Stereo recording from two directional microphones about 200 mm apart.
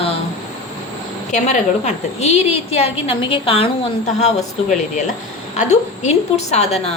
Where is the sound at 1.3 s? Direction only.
35° left (ahead or behind).